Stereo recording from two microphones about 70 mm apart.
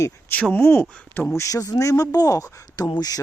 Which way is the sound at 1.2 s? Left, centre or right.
Left.